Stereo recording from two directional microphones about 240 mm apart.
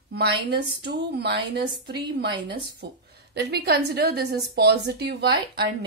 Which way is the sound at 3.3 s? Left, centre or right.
Right.